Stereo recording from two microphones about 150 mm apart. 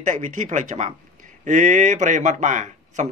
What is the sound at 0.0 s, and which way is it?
Speech, 60° right (ahead or behind).